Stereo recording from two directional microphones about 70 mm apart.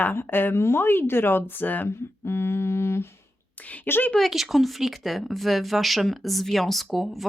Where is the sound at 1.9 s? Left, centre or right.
Left.